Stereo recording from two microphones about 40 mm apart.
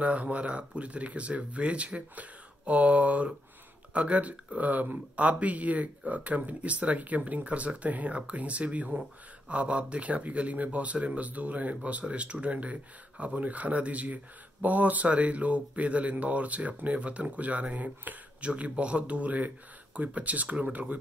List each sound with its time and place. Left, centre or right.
0.0 s speech: right
20.7 s speech: right